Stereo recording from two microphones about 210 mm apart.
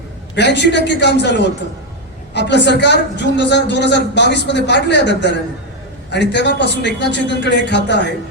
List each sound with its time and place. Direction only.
0.3 s a woman's voice: 55° left (ahead or behind)